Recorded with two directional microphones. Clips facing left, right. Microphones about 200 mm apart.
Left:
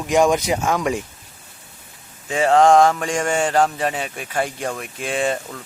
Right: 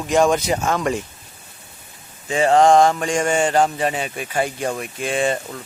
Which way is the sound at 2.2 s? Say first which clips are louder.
Even; centre (ahead or behind).